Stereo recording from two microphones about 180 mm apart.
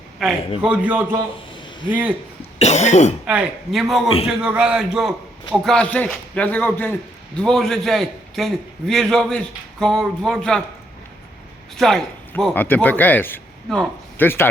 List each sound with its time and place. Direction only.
0.2 s a man's voice: centre (ahead or behind)
2.6 s cough: 40° left (ahead or behind)
3.2 s a man's voice: 5° right (ahead or behind)
11.8 s a man's voice: centre (ahead or behind)